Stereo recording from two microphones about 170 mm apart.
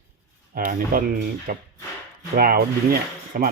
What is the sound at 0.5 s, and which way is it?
Speech, 55° right (ahead or behind).